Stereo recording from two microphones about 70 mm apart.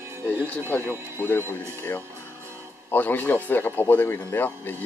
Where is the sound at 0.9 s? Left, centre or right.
Left.